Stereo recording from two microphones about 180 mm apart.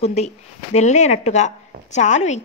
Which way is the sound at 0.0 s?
35° left (ahead or behind).